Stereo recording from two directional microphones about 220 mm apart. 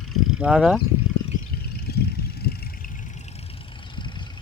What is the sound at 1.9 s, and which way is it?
Vehicle, 45° left (ahead or behind).